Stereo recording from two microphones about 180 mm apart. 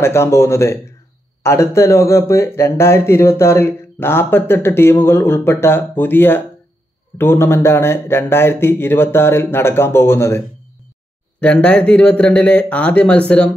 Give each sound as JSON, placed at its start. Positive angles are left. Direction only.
{"t": 0.0, "sound": "speech", "side_deg": 15}